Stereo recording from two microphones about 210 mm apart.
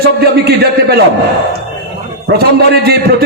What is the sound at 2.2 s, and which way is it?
A man's voice, 50° right (ahead or behind).